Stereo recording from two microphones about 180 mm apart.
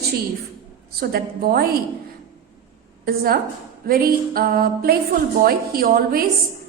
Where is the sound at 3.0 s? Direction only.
55° right (ahead or behind).